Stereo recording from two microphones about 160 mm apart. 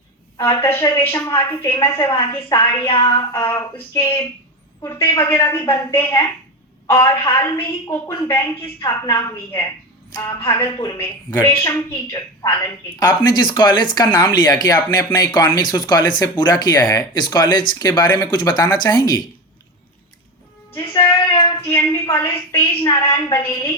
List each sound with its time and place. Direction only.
0.6 s a woman's voice: 15° left (ahead or behind)
2.3 s speech: 30° left (ahead or behind)
3.3 s a woman's voice: 15° left (ahead or behind)
4.9 s a woman's voice: 30° left (ahead or behind)
5.2 s a woman's voice: 15° left (ahead or behind)
20.9 s a woman's voice: 15° left (ahead or behind)
21.2 s a sound: 30° left (ahead or behind)
21.7 s a woman's voice: 20° left (ahead or behind)